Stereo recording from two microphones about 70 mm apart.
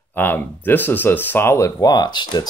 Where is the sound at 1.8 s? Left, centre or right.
Left.